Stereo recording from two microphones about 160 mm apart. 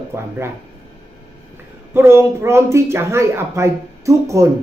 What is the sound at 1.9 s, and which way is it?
Speech, 15° right (ahead or behind).